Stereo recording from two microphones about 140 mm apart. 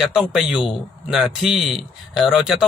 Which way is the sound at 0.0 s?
5° right (ahead or behind).